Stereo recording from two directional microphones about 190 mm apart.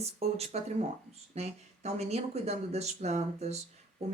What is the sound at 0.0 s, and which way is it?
Speech, 35° right (ahead or behind).